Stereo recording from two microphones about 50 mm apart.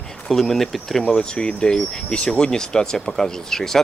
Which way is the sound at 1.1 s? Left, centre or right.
Centre.